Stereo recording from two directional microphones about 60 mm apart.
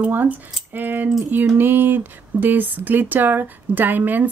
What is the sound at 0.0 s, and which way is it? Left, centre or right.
Speech, right.